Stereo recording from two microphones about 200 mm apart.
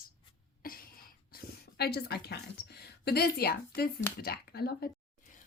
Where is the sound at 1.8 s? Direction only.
55° left (ahead or behind).